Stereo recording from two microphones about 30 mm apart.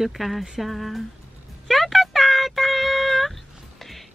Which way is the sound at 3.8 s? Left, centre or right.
Centre.